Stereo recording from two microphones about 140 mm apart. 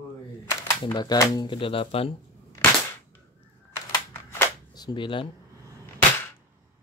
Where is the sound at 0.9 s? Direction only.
25° left (ahead or behind); by 2.1 s 40° left (ahead or behind).